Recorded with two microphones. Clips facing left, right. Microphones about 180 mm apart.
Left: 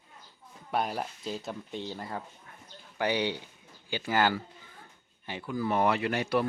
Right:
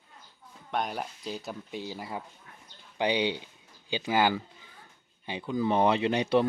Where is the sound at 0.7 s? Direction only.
5° left (ahead or behind).